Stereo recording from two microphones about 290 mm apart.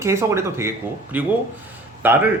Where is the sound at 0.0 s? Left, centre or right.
Centre.